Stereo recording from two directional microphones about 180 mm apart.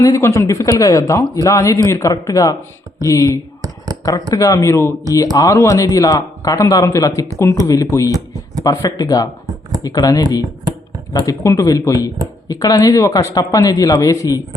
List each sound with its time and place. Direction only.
0.0 s speech: 15° left (ahead or behind)